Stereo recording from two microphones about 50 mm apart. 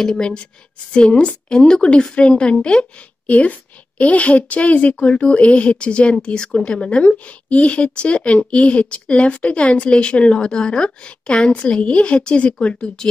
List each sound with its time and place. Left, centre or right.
0.1 s a woman's voice: centre